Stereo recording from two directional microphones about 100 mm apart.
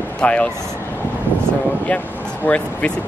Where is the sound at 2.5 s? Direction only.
15° left (ahead or behind).